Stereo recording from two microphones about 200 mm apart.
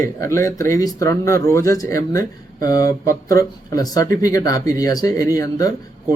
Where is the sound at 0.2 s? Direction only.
15° left (ahead or behind).